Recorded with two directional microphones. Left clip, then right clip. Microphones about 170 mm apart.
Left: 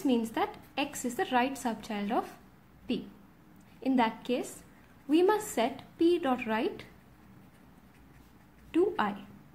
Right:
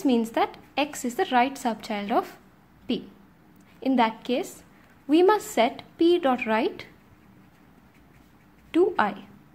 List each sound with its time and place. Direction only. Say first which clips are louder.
0.0 s a woman's voice: right 6 dB; 35° right (ahead or behind)
8.7 s a woman's voice: right 6 dB; 35° right (ahead or behind)